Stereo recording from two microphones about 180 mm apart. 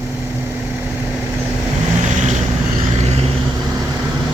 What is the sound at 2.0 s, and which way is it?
Vehicle, 45° right (ahead or behind).